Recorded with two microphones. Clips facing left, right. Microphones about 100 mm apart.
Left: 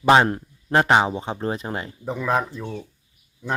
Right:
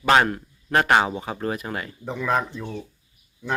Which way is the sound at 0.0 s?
25° left (ahead or behind).